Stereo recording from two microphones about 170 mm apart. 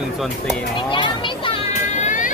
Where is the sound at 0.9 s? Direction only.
30° left (ahead or behind).